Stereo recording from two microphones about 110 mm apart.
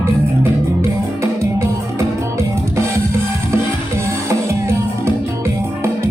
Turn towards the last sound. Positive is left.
turn(degrees=-25)  # may be behind; listen again after turning